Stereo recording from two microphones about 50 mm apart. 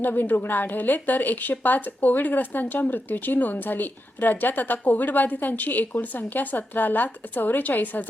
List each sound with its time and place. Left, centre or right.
0.0 s a woman's voice: left